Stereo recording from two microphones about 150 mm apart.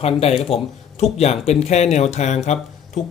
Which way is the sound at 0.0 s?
40° left (ahead or behind).